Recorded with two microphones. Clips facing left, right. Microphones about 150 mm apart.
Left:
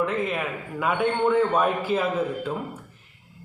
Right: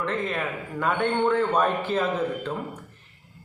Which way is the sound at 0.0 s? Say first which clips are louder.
Left 2 dB; 5° left (ahead or behind).